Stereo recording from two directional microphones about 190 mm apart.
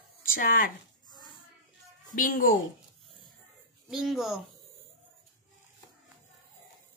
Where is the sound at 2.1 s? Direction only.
45° left (ahead or behind).